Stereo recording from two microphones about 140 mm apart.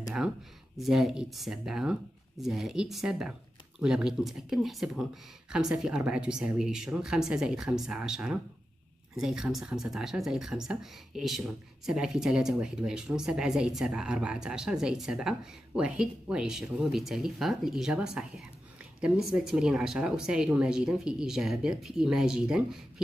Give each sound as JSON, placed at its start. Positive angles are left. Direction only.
{"t": 0.7, "sound": "speech", "side_deg": 0}